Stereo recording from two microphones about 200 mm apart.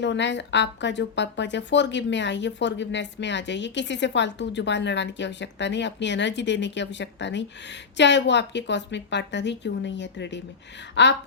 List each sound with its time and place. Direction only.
0.0 s speech: 60° left (ahead or behind)